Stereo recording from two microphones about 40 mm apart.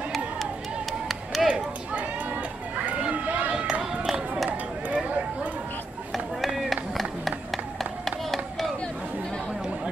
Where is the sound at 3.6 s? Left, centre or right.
Right.